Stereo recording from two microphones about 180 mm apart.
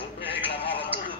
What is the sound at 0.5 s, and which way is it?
Music, 30° left (ahead or behind).